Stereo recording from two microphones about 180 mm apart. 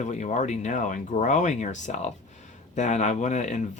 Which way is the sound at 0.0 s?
40° left (ahead or behind).